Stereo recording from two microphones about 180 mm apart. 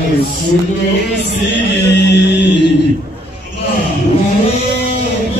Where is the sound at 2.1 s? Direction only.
70° left (ahead or behind).